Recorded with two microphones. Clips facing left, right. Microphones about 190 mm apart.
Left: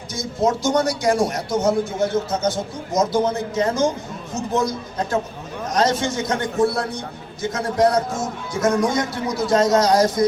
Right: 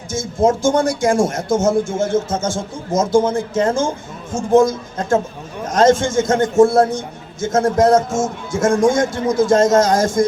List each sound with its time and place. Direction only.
0.1 s speech: 50° right (ahead or behind)